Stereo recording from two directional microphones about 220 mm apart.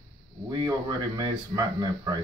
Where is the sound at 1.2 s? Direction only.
15° right (ahead or behind).